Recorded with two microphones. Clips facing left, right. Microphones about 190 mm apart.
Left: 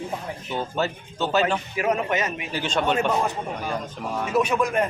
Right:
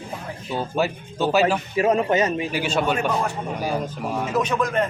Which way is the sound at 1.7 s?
30° right (ahead or behind).